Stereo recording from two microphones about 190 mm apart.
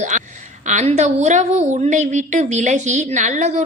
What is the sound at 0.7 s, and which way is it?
A woman's voice, 40° right (ahead or behind).